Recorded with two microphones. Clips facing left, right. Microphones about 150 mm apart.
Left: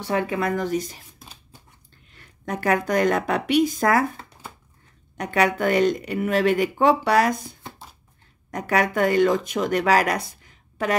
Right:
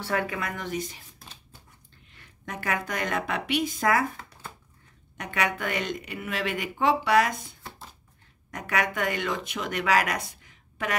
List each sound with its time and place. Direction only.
0.0 s speech: 25° left (ahead or behind); by 0.9 s 40° left (ahead or behind)
2.1 s speech: 40° left (ahead or behind)